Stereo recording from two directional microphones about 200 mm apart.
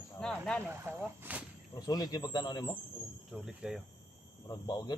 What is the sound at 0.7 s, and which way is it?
Speech, 10° right (ahead or behind).